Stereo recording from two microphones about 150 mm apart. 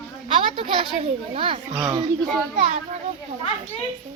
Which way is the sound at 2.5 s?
55° right (ahead or behind).